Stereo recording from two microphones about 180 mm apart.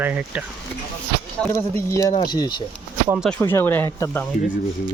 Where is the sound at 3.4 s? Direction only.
15° left (ahead or behind).